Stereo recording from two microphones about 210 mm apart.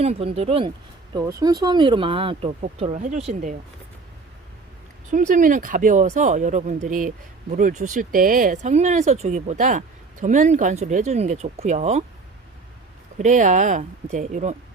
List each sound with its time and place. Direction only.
0.0 s a woman's voice: 30° right (ahead or behind)
1.1 s a woman's voice: 15° right (ahead or behind); by 3.5 s 35° right (ahead or behind)
5.1 s speech: 40° right (ahead or behind)
13.1 s speech: 35° right (ahead or behind)